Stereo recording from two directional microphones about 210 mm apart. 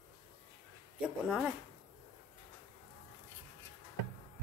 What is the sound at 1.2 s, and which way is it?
Speech, centre (ahead or behind).